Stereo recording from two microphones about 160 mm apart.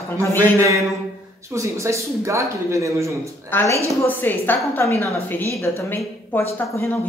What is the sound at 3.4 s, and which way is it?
A woman's voice, 15° left (ahead or behind).